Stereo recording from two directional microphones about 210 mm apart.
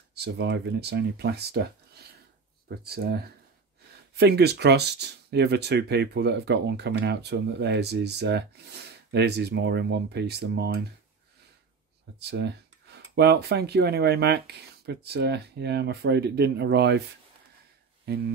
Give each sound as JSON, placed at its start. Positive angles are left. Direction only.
{"t": 0.1, "sound": "speech", "side_deg": -50}
{"t": 2.7, "sound": "speech", "side_deg": -50}
{"t": 4.2, "sound": "speech", "side_deg": -50}
{"t": 12.2, "sound": "speech", "side_deg": -50}